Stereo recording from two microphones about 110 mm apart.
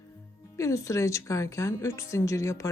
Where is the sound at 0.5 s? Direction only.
30° left (ahead or behind).